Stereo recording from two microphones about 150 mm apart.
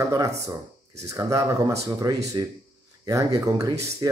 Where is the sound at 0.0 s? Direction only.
20° right (ahead or behind).